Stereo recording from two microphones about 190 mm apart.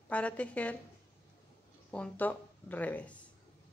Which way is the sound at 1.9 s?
5° left (ahead or behind).